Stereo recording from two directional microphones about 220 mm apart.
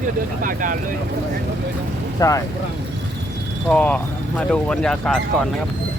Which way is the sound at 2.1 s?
15° left (ahead or behind).